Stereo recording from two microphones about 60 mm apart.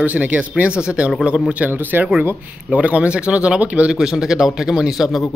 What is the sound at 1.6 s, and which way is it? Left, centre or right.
A man's voice, right.